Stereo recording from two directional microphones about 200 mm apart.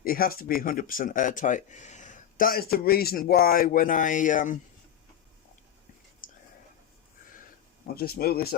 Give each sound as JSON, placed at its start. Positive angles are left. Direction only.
{"t": 0.0, "sound": "speech", "side_deg": 45}
{"t": 7.9, "sound": "speech", "side_deg": 50}